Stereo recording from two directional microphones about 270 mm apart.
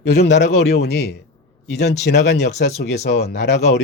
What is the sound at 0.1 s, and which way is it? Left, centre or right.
Speech, left.